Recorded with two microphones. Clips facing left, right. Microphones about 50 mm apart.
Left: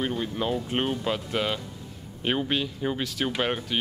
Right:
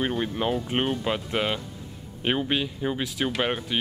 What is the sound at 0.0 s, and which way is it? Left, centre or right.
Speech, right.